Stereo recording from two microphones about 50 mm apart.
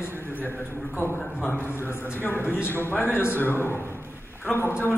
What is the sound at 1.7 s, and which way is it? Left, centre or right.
A woman's voice, left.